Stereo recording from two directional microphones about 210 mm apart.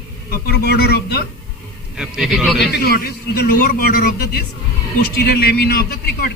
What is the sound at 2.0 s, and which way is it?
Speech, 5° right (ahead or behind).